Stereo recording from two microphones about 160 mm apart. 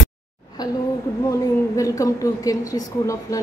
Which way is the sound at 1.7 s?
20° left (ahead or behind).